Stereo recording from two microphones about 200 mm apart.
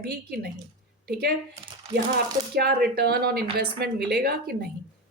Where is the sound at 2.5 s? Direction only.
50° right (ahead or behind).